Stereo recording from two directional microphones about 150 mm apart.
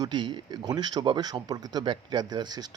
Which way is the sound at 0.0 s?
30° right (ahead or behind).